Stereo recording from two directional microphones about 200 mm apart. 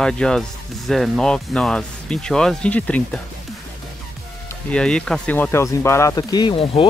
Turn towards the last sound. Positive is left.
turn(degrees=25)  # may be behind; listen again after turning